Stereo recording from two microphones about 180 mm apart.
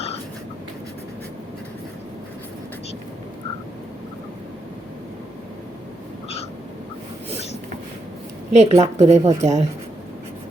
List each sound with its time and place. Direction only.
8.5 s speech: 40° right (ahead or behind)